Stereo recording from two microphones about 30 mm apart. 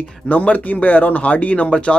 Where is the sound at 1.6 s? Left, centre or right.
Left.